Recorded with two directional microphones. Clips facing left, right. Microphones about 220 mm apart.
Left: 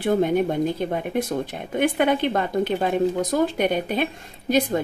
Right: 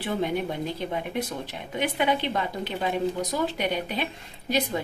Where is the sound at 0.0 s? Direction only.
45° left (ahead or behind).